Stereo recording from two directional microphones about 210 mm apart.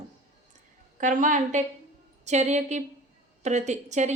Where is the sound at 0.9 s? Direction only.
40° right (ahead or behind).